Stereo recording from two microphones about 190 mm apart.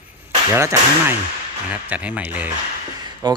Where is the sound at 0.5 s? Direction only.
15° right (ahead or behind).